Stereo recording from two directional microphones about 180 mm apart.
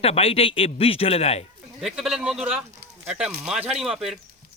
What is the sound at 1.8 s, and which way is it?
Speech, 5° right (ahead or behind).